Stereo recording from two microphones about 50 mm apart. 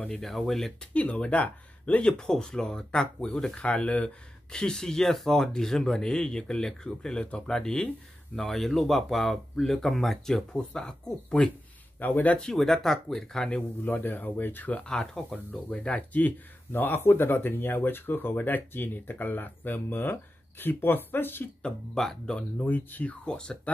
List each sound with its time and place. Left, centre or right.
0.2 s speech: centre
0.9 s speech: left
2.0 s speech: centre
12.0 s speech: left
12.5 s speech: centre
13.8 s speech: left
14.9 s speech: centre
15.8 s speech: left
16.7 s speech: left
21.6 s speech: centre
22.6 s speech: left
23.2 s speech: centre